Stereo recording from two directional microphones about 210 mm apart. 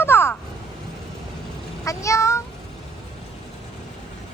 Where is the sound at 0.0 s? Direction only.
10° left (ahead or behind).